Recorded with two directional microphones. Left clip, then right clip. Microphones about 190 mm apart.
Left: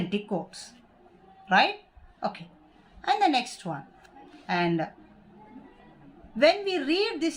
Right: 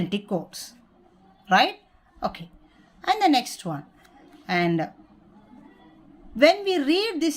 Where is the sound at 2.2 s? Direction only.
45° right (ahead or behind).